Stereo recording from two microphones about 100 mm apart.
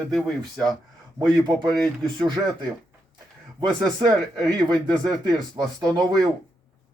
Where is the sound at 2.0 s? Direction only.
50° right (ahead or behind).